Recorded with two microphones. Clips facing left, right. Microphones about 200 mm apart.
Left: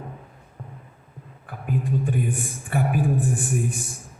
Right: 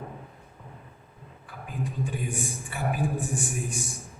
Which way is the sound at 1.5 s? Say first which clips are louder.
Left 8 dB; 55° left (ahead or behind).